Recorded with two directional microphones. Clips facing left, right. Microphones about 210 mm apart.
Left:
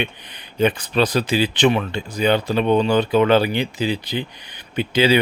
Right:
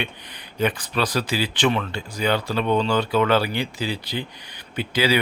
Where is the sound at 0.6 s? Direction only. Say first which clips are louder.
Left 5 dB; 25° left (ahead or behind).